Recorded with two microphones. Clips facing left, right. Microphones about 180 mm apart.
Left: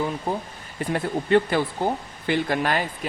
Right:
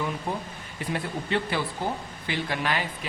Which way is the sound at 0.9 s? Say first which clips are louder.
Left 9 dB; 50° left (ahead or behind).